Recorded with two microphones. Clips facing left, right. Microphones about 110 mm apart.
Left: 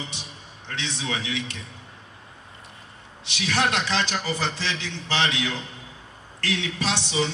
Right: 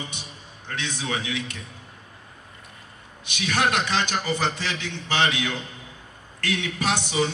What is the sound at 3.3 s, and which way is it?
Speech, 30° left (ahead or behind).